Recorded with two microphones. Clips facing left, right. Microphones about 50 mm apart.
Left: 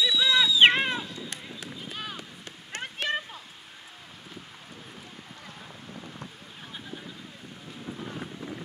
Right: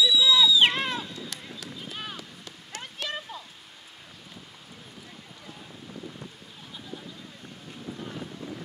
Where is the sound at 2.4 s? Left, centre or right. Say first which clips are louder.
Left 3 dB; left.